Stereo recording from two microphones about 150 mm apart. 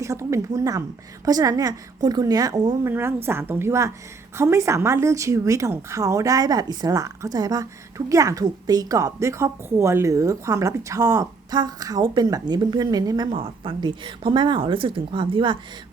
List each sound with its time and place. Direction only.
0.0 s a woman's voice: 20° right (ahead or behind)